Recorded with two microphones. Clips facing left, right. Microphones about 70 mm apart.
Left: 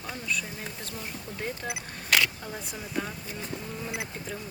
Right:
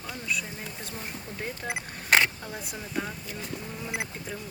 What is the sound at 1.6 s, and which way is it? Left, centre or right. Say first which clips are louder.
Speech: right 2 dB; right.